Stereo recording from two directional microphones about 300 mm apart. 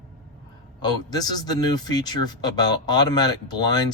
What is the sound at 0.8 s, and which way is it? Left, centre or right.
Speech, centre.